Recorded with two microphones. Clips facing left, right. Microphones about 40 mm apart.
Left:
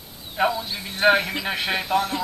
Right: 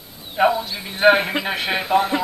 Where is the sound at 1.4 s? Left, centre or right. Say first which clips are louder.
Right 3 dB; centre.